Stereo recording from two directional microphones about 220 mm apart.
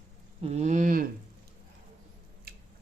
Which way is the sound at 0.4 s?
30° right (ahead or behind).